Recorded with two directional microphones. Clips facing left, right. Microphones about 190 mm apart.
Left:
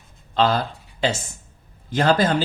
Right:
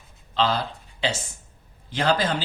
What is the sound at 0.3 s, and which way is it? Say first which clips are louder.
Speech: left 4 dB; 50° left (ahead or behind).